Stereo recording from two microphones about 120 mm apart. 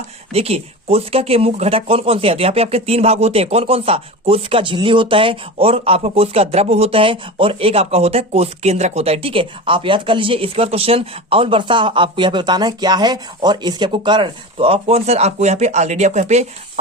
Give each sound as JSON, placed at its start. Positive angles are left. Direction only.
{"t": 0.3, "sound": "speech", "side_deg": -55}